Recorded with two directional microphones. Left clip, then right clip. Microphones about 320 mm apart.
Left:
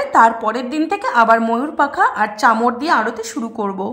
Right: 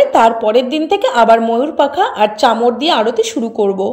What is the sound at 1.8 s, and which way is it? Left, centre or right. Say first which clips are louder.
A woman's voice: right 2 dB; centre.